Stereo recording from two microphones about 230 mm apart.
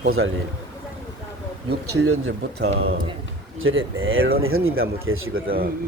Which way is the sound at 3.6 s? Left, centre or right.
Right.